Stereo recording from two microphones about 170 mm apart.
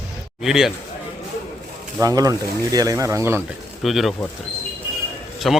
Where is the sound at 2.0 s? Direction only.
20° right (ahead or behind).